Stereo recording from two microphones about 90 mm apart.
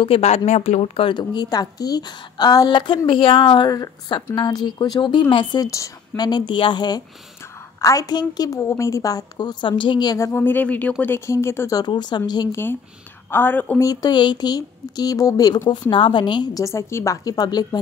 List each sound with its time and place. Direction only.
0.1 s speech: 90° left
1.1 s a woman's voice: 55° left (ahead or behind)
3.1 s a woman's voice: 70° left (ahead or behind)
3.6 s a woman's voice: 40° left (ahead or behind)
5.3 s a woman's voice: 70° left (ahead or behind)
5.6 s a woman's voice: 40° left (ahead or behind); by 7.0 s 55° left (ahead or behind)
7.8 s a woman's voice: 40° left (ahead or behind); by 10.1 s 60° left (ahead or behind)
10.1 s speech: 30° left (ahead or behind)
11.7 s a woman's voice: 55° left (ahead or behind)
13.3 s speech: 20° left (ahead or behind)
13.7 s a woman's voice: 45° left (ahead or behind)
15.7 s speech: 65° left (ahead or behind)
16.5 s a woman's voice: 35° left (ahead or behind)